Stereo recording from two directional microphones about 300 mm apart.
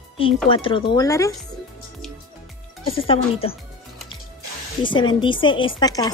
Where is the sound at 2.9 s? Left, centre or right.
Centre.